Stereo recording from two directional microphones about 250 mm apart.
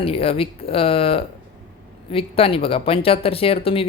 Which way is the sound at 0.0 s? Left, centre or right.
Left.